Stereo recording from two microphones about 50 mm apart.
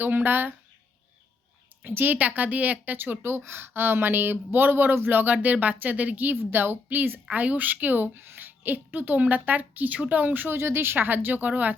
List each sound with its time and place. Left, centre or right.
0.0 s speech: right
1.8 s speech: right
6.4 s speech: right
10.6 s speech: right